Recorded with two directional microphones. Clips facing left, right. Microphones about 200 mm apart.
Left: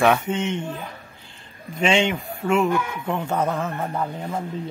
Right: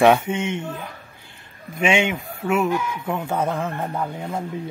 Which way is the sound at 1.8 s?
10° right (ahead or behind).